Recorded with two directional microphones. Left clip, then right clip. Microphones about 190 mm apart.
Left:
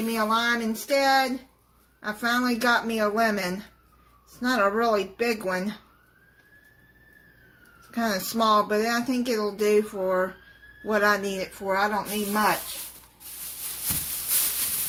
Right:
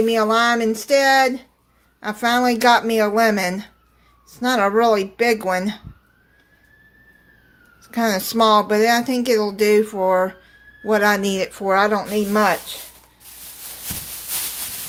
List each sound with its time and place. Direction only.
0.1 s speech: 45° right (ahead or behind)
7.9 s speech: 40° right (ahead or behind)